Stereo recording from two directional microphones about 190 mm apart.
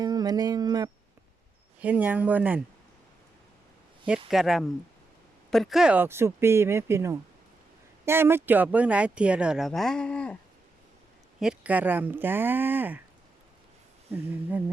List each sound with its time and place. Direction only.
0.0 s speech: 20° right (ahead or behind)
1.8 s speech: 10° right (ahead or behind)
4.3 s speech: centre (ahead or behind)
11.3 s speech: 5° right (ahead or behind)